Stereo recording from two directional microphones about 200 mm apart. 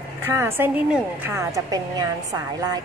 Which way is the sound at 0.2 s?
10° right (ahead or behind).